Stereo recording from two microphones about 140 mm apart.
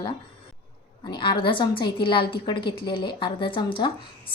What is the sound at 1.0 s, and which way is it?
A woman's voice, 35° left (ahead or behind).